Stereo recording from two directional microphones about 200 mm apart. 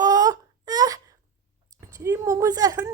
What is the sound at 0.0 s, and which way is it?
Wail, 15° right (ahead or behind).